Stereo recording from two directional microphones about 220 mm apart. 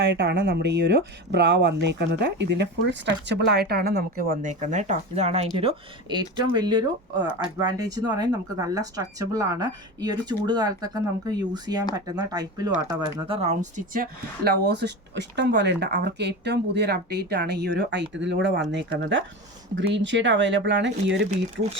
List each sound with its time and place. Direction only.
0.3 s speech: 50° right (ahead or behind)